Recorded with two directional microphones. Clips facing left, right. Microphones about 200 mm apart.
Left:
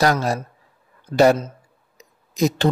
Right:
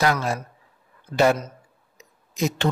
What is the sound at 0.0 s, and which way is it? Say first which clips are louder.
A man's voice: left 3 dB; 40° left (ahead or behind).